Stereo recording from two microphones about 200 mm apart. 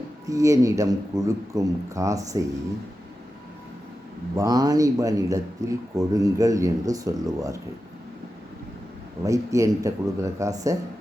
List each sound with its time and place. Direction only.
0.3 s speech: 15° right (ahead or behind)
4.4 s speech: 20° right (ahead or behind)
9.2 s speech: 15° right (ahead or behind)